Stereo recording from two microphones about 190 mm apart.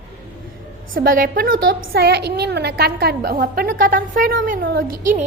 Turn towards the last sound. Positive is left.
turn(degrees=-50)  # may be behind; listen again after turning